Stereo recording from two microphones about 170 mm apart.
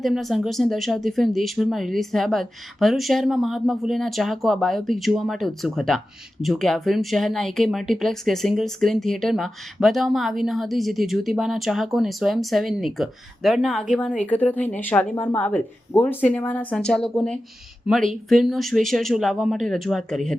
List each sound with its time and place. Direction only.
0.0 s speech: centre (ahead or behind)